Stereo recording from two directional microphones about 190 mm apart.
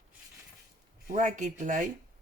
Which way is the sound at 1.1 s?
40° right (ahead or behind).